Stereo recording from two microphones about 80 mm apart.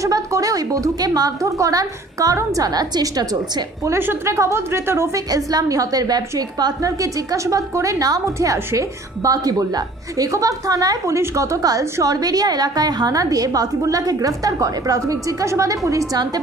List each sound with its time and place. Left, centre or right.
0.0 s a woman's voice: right
4.0 s a woman's voice: right
5.3 s a woman's voice: right